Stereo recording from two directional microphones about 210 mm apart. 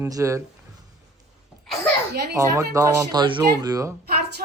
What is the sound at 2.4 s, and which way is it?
Speech, 15° right (ahead or behind).